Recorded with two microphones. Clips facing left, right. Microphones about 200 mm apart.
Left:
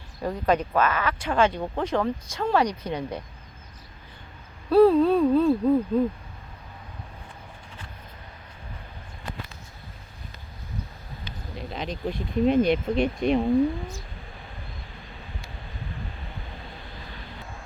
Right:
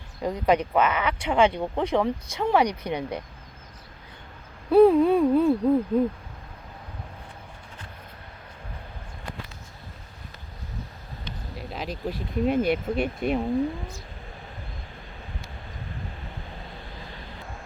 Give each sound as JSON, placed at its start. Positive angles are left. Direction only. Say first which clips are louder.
{"t": 0.2, "sound": "speech", "louder": "right 1 dB", "side_deg": -15}
{"t": 4.7, "sound": "speech", "louder": "right 1 dB", "side_deg": -15}
{"t": 11.5, "sound": "speech", "louder": "left 1 dB", "side_deg": -5}